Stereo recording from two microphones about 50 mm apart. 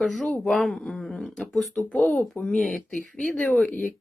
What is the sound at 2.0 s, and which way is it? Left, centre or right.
Speech, left.